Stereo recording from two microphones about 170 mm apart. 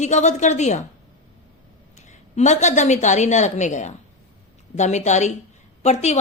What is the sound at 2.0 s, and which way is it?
A woman's voice, 45° left (ahead or behind).